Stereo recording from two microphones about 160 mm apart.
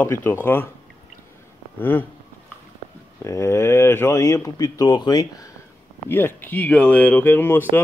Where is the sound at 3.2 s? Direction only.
15° left (ahead or behind).